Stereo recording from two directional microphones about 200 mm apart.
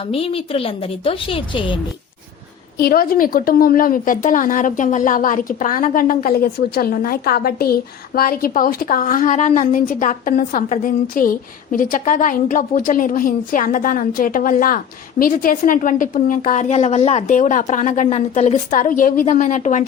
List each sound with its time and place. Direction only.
0.0 s a woman's voice: 30° left (ahead or behind)
2.8 s a woman's voice: 50° left (ahead or behind)